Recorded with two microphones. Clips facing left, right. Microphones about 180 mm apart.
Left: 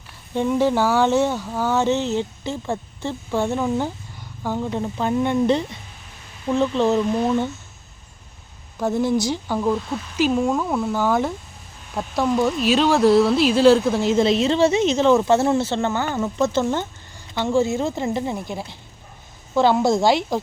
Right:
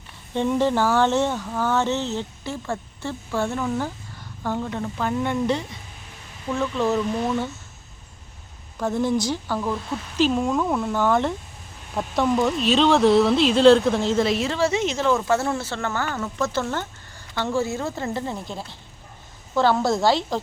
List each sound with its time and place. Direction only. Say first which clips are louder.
0.3 s speech: left 2 dB; 5° left (ahead or behind); by 7.4 s 25° left (ahead or behind)
8.8 s speech: left 2 dB; 10° left (ahead or behind)
14.3 s speech: left 5 dB; 25° left (ahead or behind)